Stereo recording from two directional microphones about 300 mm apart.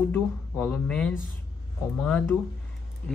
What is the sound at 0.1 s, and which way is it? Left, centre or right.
Speech, centre.